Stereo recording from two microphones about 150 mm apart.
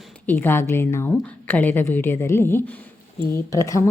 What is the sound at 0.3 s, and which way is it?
A woman's voice, 15° left (ahead or behind).